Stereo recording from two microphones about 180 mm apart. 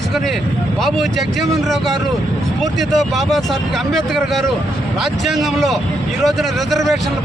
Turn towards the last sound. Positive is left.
turn(degrees=0)  # may be behind; listen again after turning